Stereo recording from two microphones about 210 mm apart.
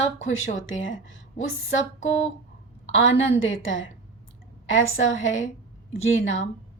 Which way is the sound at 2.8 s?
65° left (ahead or behind).